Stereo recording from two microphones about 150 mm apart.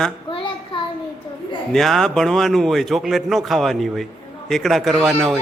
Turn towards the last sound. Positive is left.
turn(degrees=0)  # may be behind; listen again after turning